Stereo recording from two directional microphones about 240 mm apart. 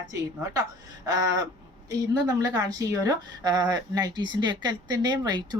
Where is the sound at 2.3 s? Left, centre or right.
Centre.